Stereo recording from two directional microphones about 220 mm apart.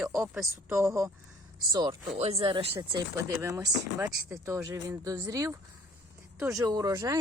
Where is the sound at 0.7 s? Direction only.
15° right (ahead or behind).